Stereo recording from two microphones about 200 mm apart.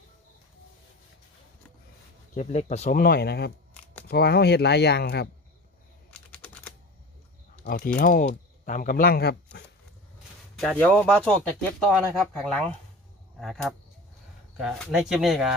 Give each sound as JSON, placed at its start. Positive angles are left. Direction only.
{"t": 2.3, "sound": "speech", "side_deg": 35}
{"t": 2.9, "sound": "speech", "side_deg": 50}
{"t": 6.1, "sound": "typing", "side_deg": 5}
{"t": 7.6, "sound": "speech", "side_deg": 50}
{"t": 10.6, "sound": "speech", "side_deg": 5}